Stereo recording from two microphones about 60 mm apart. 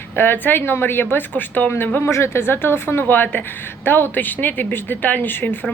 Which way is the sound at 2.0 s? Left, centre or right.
Left.